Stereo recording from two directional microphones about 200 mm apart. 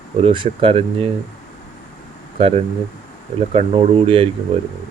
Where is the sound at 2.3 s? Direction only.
30° right (ahead or behind).